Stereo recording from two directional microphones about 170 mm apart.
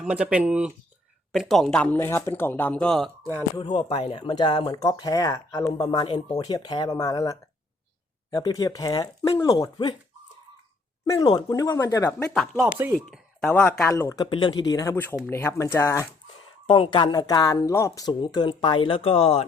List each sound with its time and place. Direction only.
0.0 s speech: 5° right (ahead or behind)
3.6 s speech: 30° left (ahead or behind)
11.0 s speech: 25° left (ahead or behind)
12.3 s speech: centre (ahead or behind)
12.7 s speech: 10° right (ahead or behind)
13.4 s speech: 10° left (ahead or behind)
13.9 s speech: 20° left (ahead or behind)
16.6 s speech: 30° left (ahead or behind)